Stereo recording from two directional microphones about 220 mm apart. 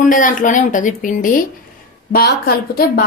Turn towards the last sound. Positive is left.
turn(degrees=45)  # may be behind; listen again after turning